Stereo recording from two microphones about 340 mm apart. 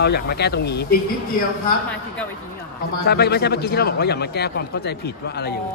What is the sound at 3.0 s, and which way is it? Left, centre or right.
A man's voice, left.